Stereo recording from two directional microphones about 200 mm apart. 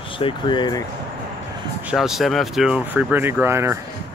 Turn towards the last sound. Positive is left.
turn(degrees=-15)  # may be behind; listen again after turning